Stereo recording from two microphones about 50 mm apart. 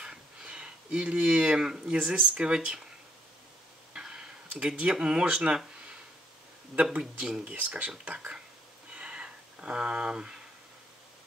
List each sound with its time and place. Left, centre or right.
0.0 s a sound: centre
2.0 s speech: right
3.9 s tick-tock: centre
4.6 s speech: right
6.7 s speech: right
8.9 s a sound: right